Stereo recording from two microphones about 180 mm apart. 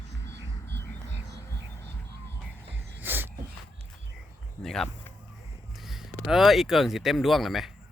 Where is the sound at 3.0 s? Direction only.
10° right (ahead or behind).